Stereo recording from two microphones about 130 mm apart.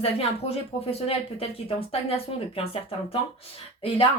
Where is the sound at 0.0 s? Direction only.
50° left (ahead or behind).